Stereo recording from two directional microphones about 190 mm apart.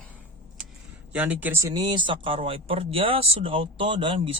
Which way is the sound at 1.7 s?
25° right (ahead or behind).